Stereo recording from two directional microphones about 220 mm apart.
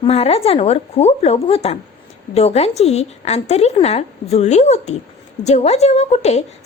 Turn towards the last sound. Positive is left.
turn(degrees=30)  # may be behind; listen again after turning